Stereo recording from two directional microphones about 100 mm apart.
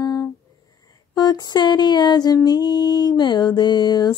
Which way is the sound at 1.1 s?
45° left (ahead or behind).